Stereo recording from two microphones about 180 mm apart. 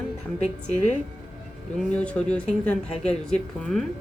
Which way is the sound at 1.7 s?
5° left (ahead or behind).